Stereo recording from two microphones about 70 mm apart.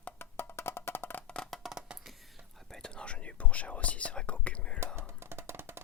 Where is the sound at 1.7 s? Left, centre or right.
Centre.